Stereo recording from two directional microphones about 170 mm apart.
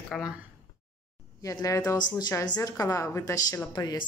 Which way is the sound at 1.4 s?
20° left (ahead or behind).